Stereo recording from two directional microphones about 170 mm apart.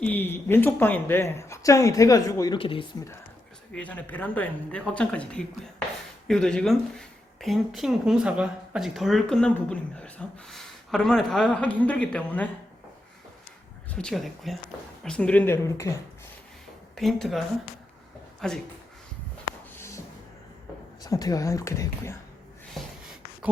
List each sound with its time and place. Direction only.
0.0 s speech: 10° left (ahead or behind)
2.6 s speech: 30° left (ahead or behind)
3.8 s speech: 10° left (ahead or behind)
13.9 s speech: 5° left (ahead or behind)
17.0 s speech: centre (ahead or behind)
21.0 s speech: 20° left (ahead or behind)